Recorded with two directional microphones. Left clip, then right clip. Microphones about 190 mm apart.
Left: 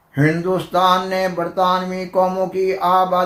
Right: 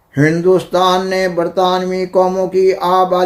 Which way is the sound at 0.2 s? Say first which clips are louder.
Right 6 dB; 50° right (ahead or behind).